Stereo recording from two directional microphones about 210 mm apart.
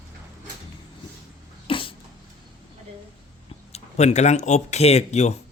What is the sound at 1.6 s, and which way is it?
Dog, 25° left (ahead or behind).